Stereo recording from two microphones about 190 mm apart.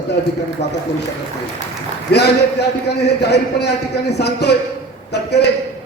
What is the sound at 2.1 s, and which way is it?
A man's voice, 60° left (ahead or behind).